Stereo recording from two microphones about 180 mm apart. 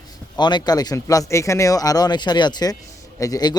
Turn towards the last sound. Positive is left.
turn(degrees=20)  # may be behind; listen again after turning